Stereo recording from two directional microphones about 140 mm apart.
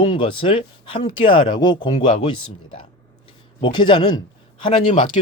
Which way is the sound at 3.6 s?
35° left (ahead or behind).